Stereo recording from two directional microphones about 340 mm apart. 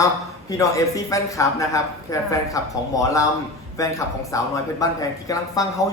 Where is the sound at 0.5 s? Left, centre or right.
Centre.